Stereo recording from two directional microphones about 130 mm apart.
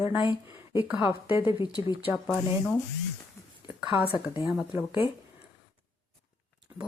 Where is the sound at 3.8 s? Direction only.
10° right (ahead or behind).